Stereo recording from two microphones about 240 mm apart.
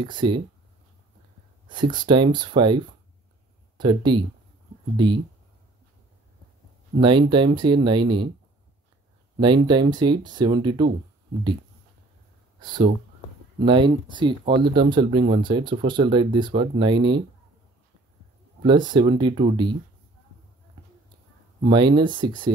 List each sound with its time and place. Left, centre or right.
0.0 s speech: centre
1.7 s speech: centre
7.0 s speech: centre
9.4 s speech: centre
12.5 s speech: centre
18.6 s speech: centre
21.6 s speech: centre